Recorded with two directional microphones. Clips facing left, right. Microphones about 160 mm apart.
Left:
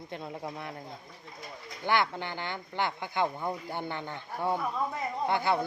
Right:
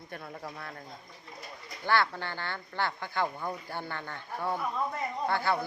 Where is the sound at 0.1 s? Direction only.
20° left (ahead or behind).